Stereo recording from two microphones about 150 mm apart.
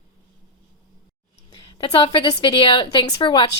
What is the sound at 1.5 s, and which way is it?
A woman's voice, 30° left (ahead or behind).